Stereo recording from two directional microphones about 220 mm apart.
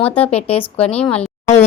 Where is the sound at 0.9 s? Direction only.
5° left (ahead or behind).